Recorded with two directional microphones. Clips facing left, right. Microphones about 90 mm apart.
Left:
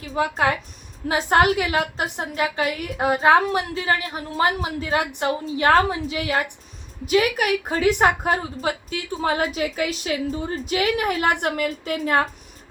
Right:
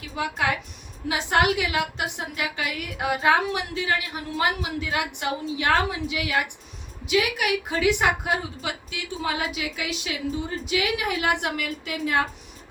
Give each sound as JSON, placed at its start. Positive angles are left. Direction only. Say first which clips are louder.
{"t": 0.2, "sound": "a woman's voice", "louder": "left 5 dB", "side_deg": 40}